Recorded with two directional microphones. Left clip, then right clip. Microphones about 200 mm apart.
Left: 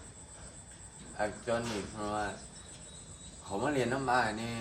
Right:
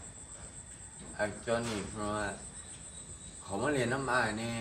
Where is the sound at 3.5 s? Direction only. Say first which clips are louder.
Even; centre (ahead or behind).